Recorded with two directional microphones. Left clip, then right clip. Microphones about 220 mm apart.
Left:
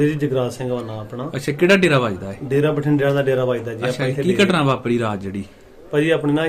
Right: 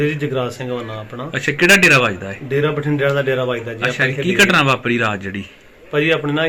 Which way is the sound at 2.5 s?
20° left (ahead or behind).